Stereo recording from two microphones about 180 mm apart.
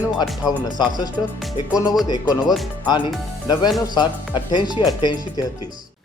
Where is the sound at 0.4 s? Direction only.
20° left (ahead or behind).